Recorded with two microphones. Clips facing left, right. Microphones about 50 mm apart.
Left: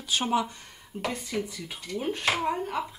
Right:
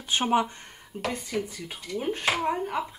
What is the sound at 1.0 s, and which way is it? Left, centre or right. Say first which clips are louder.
Speech: right 1 dB; centre.